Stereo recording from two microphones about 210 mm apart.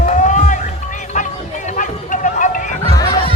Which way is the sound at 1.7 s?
40° left (ahead or behind).